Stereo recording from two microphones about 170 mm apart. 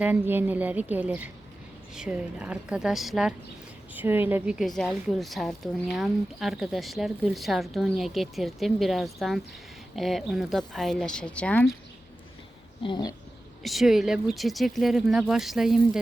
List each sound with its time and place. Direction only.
0.0 s a woman's voice: 10° right (ahead or behind); by 11.7 s 5° left (ahead or behind)
12.8 s speech: 25° left (ahead or behind)
13.6 s a woman's voice: centre (ahead or behind)